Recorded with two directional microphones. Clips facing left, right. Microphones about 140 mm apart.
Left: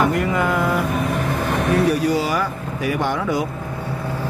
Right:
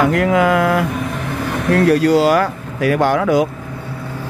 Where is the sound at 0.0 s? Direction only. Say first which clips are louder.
Right 5 dB; 90° right.